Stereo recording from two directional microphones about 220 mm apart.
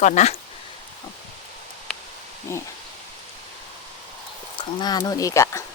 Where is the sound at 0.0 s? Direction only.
30° left (ahead or behind).